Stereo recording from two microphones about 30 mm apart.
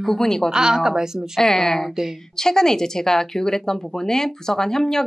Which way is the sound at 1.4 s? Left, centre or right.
Centre.